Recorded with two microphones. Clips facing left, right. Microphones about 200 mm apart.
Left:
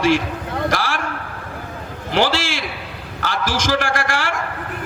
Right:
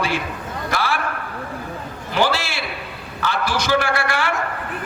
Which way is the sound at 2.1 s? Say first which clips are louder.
Left 2 dB; 90° left.